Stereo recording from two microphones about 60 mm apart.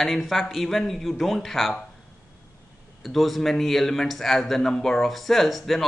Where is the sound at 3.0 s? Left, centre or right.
Centre.